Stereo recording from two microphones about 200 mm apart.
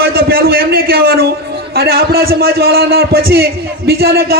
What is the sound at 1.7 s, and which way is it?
A man's voice, 50° right (ahead or behind).